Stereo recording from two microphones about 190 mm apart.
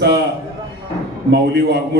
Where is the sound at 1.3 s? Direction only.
60° right (ahead or behind).